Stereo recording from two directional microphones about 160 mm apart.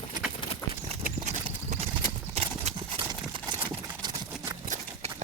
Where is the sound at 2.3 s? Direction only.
40° right (ahead or behind).